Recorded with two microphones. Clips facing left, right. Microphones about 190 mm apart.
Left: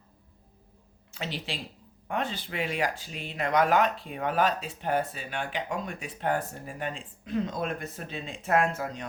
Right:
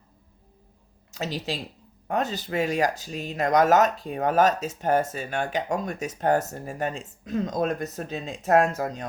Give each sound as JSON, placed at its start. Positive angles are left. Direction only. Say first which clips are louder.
{"t": 1.1, "sound": "speech", "louder": "right 5 dB", "side_deg": -40}